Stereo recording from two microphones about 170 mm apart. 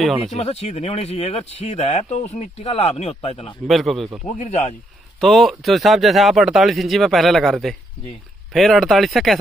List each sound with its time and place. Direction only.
0.0 s speech: centre (ahead or behind)
0.3 s speech: 40° left (ahead or behind)
3.6 s speech: centre (ahead or behind)
4.4 s speech: 45° left (ahead or behind)
5.2 s speech: centre (ahead or behind)